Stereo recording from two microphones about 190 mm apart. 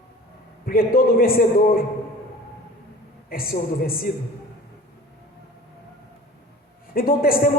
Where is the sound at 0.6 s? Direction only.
50° left (ahead or behind).